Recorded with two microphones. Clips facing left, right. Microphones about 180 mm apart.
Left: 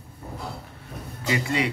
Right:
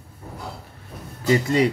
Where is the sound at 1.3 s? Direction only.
40° right (ahead or behind).